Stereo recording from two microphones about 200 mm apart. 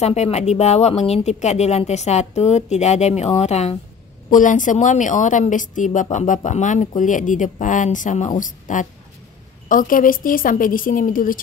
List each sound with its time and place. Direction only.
0.0 s a woman's voice: 35° left (ahead or behind)